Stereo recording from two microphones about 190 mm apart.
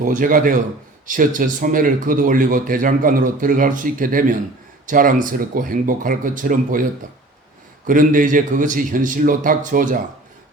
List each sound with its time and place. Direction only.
0.0 s speech: 45° right (ahead or behind)
7.9 s speech: 45° right (ahead or behind)